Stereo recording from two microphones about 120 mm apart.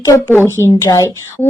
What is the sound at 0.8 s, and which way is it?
Speech, 30° left (ahead or behind).